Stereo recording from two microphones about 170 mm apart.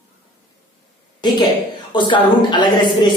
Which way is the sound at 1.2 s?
25° left (ahead or behind).